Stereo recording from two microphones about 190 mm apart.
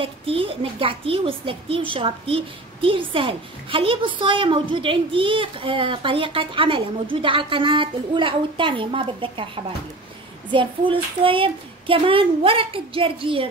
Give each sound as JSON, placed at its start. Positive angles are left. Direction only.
{"t": 0.0, "sound": "a child's voice", "side_deg": -30}